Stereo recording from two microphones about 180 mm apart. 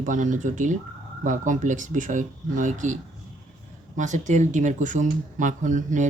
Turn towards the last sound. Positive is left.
turn(degrees=-45)  # may be behind; listen again after turning